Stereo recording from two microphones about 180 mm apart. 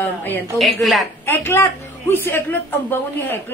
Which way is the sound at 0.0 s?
10° left (ahead or behind).